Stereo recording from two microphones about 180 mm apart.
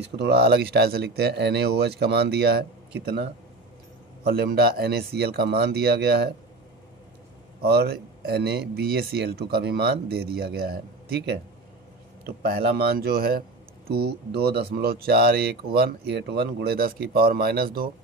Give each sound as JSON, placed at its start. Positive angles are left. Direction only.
{"t": 0.0, "sound": "speech", "side_deg": -65}
{"t": 4.3, "sound": "speech", "side_deg": -60}
{"t": 7.6, "sound": "speech", "side_deg": -60}